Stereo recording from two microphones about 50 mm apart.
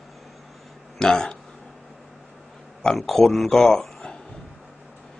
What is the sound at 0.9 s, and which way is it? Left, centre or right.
Speech, centre.